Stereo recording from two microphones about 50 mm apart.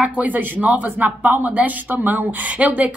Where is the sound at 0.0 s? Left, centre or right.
Right.